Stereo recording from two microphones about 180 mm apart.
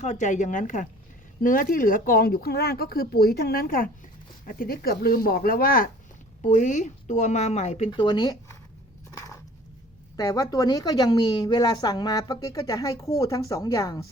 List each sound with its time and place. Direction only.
0.0 s speech: 40° left (ahead or behind)
7.9 s a woman's voice: 25° left (ahead or behind)
9.1 s a sound: 15° left (ahead or behind)
10.2 s a woman's voice: 20° left (ahead or behind)